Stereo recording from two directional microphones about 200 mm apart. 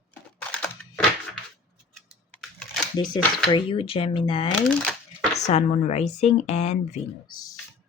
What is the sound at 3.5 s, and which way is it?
Speech, 25° left (ahead or behind).